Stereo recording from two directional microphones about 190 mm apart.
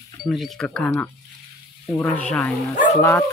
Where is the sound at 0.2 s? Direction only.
Centre (ahead or behind).